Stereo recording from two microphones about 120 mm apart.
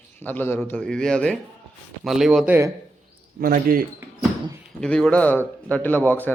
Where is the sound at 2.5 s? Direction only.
25° right (ahead or behind).